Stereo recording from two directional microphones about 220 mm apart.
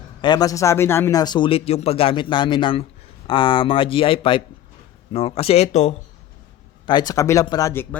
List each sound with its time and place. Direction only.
0.2 s speech: 20° left (ahead or behind)
6.8 s speech: 20° left (ahead or behind)